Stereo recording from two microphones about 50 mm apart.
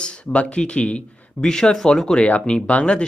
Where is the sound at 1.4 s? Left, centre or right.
Centre.